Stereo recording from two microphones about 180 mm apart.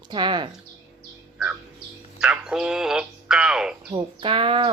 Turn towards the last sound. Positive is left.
turn(degrees=-30)  # may be behind; listen again after turning